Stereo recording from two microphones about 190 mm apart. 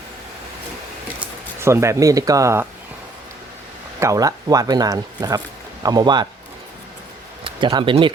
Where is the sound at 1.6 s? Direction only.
15° right (ahead or behind).